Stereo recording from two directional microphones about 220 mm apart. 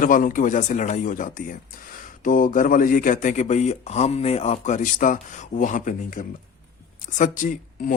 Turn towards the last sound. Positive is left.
turn(degrees=35)  # may be behind; listen again after turning